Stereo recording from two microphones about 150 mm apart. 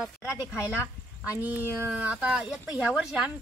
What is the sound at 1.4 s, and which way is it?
Speech, 10° right (ahead or behind).